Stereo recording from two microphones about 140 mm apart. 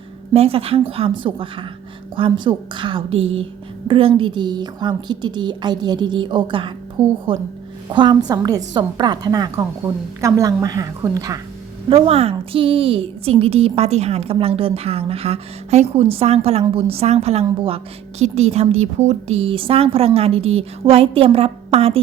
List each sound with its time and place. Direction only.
0.3 s a woman's voice: 45° right (ahead or behind); by 11.3 s 25° right (ahead or behind)
11.9 s a woman's voice: 45° right (ahead or behind)